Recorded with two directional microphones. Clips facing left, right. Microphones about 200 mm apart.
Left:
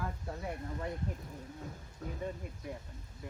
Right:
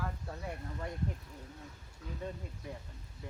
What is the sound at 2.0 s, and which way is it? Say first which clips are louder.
Speech: left 3 dB; 45° left (ahead or behind).